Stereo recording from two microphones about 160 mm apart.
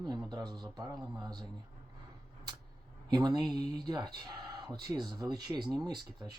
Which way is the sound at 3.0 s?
25° right (ahead or behind).